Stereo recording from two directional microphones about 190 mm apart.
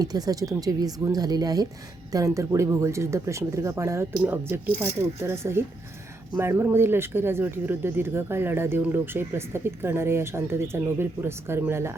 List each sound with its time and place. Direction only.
0.0 s speech: 20° right (ahead or behind)